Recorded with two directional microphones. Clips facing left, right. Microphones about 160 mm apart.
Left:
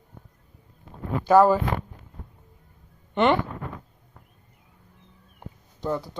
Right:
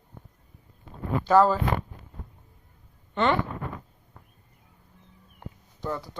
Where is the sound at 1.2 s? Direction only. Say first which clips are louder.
Left 3 dB; 10° left (ahead or behind).